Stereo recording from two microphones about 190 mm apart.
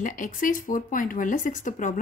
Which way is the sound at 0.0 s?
45° left (ahead or behind).